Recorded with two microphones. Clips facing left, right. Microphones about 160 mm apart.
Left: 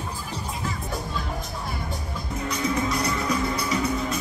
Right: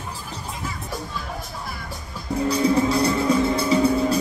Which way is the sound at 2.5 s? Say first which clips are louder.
Right 6 dB; 30° right (ahead or behind).